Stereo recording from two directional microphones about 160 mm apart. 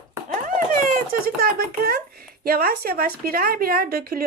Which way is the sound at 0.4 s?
55° right (ahead or behind).